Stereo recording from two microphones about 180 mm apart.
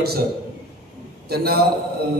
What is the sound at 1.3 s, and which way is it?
Speech, 60° right (ahead or behind).